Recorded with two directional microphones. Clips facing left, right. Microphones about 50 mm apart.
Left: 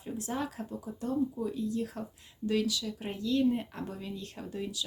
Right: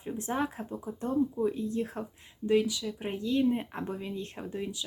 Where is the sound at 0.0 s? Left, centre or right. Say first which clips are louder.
Right 3 dB; right.